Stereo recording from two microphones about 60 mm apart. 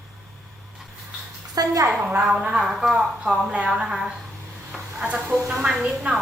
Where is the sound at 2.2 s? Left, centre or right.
Centre.